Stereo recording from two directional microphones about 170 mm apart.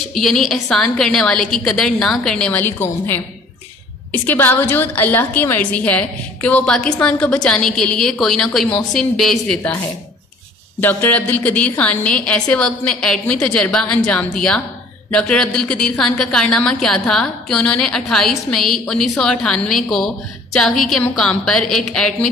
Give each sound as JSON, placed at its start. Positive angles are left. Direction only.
{"t": 0.1, "sound": "a woman's voice", "side_deg": 0}
{"t": 10.8, "sound": "a woman's voice", "side_deg": 10}